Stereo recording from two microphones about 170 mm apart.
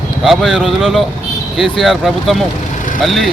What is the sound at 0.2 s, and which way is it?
Speech, centre (ahead or behind).